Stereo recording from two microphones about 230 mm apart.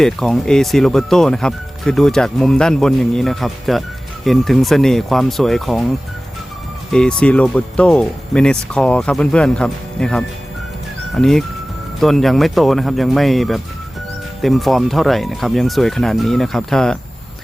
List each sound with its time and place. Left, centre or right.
0.0 s speech: centre
6.9 s speech: centre